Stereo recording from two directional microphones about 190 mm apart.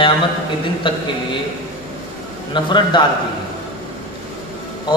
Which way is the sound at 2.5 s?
25° left (ahead or behind).